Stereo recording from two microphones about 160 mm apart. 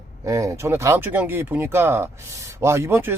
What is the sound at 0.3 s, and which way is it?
Speech, 20° right (ahead or behind).